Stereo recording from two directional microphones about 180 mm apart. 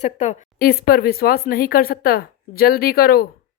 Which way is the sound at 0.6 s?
60° left (ahead or behind).